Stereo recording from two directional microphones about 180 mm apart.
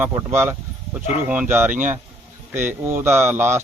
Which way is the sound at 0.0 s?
10° right (ahead or behind).